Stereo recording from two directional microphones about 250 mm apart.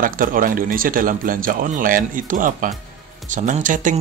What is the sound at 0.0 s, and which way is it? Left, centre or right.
Speech, right.